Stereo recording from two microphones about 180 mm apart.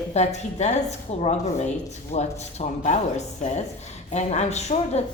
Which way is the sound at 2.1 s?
40° left (ahead or behind).